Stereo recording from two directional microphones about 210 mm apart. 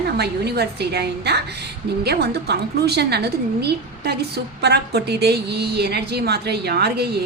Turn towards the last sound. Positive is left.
turn(degrees=-50)  # may be behind; listen again after turning